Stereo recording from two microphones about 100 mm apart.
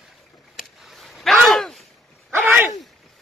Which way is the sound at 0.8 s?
Centre (ahead or behind).